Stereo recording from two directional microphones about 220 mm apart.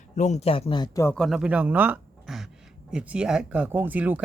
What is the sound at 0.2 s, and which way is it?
Speech, 30° left (ahead or behind).